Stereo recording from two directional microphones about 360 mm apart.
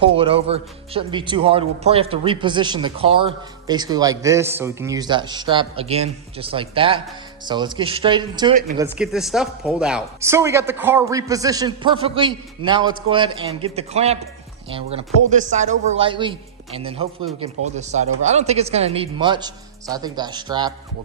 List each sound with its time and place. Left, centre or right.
0.0 s a man's voice: centre
8.8 s a man's voice: centre